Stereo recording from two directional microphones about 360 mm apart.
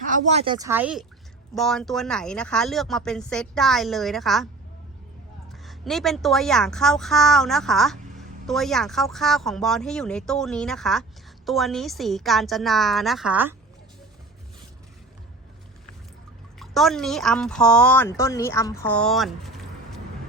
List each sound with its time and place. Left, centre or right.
0.1 s a woman's voice: centre
5.6 s a woman's voice: centre
16.6 s a woman's voice: centre